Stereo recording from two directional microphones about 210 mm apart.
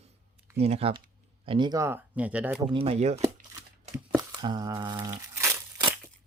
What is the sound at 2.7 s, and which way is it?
Speech, 30° right (ahead or behind).